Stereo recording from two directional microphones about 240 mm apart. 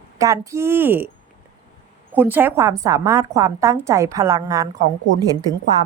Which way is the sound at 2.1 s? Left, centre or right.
Centre.